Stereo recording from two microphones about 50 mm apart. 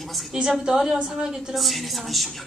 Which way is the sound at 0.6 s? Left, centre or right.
Centre.